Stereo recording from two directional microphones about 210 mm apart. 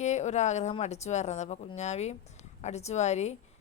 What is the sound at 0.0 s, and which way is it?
Speech, 35° left (ahead or behind).